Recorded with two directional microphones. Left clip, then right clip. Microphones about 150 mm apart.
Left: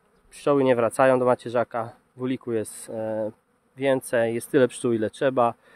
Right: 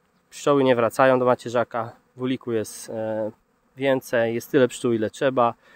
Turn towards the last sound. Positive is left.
turn(degrees=-5)  # may be behind; listen again after turning